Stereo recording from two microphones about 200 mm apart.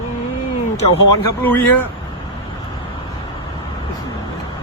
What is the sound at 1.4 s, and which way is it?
Speech, 10° left (ahead or behind).